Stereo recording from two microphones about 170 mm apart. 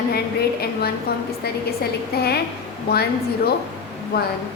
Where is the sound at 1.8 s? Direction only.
70° left (ahead or behind).